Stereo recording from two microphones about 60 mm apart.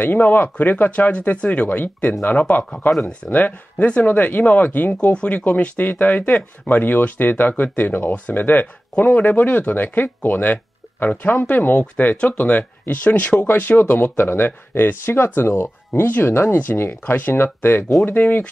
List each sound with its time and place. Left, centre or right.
0.0 s speech: left
15.9 s speech: left